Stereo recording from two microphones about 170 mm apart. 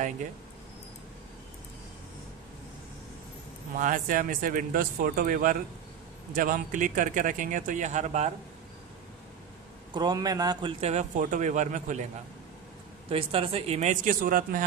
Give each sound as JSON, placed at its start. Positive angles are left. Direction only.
{"t": 3.7, "sound": "speech", "side_deg": -50}
{"t": 9.9, "sound": "a man's voice", "side_deg": -25}
{"t": 10.8, "sound": "speech", "side_deg": -40}
{"t": 13.1, "sound": "speech", "side_deg": -35}